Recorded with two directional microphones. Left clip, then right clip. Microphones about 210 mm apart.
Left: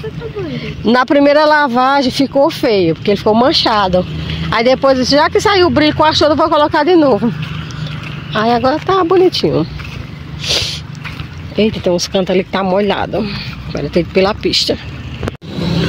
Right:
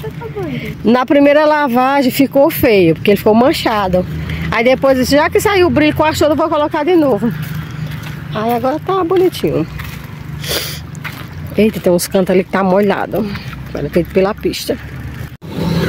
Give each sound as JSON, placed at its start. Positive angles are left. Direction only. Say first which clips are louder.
{"t": 0.6, "sound": "speech", "louder": "left 1 dB", "side_deg": -15}
{"t": 8.3, "sound": "speech", "louder": "left 3 dB", "side_deg": 5}
{"t": 10.4, "sound": "a sound", "louder": "left 4 dB", "side_deg": -20}
{"t": 11.5, "sound": "speech", "louder": "right 1 dB", "side_deg": -20}